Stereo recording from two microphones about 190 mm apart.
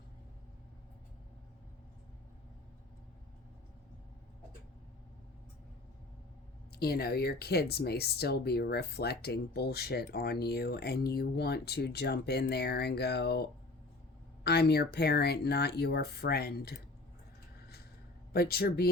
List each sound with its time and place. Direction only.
6.7 s speech: 55° left (ahead or behind)
18.3 s speech: 55° left (ahead or behind)